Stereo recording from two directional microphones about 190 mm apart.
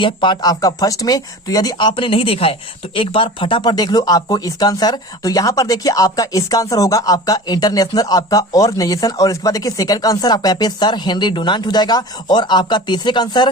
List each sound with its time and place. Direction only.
0.0 s speech: 25° left (ahead or behind)